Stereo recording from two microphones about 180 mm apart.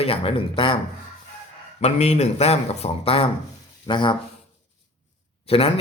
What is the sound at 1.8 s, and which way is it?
Speech, 35° left (ahead or behind).